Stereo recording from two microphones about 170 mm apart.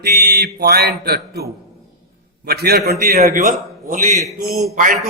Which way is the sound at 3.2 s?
50° right (ahead or behind).